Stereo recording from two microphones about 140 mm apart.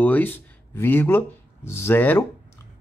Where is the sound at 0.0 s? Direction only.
15° left (ahead or behind).